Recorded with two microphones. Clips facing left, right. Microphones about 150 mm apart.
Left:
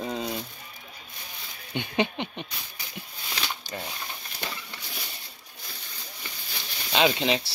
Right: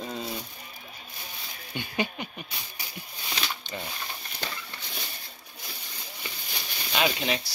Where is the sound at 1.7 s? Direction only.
20° left (ahead or behind).